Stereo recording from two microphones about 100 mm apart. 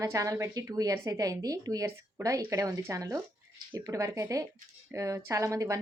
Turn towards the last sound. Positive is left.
turn(degrees=-30)  # may be behind; listen again after turning